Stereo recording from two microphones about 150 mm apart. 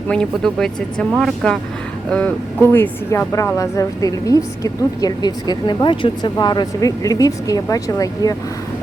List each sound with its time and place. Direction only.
0.1 s speech: 5° left (ahead or behind); by 8.4 s 25° left (ahead or behind)